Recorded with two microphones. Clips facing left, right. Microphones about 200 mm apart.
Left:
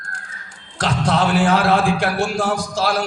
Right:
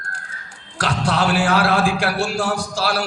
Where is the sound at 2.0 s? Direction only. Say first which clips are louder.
Left 1 dB; 30° right (ahead or behind).